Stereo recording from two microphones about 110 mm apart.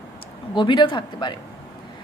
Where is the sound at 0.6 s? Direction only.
45° left (ahead or behind).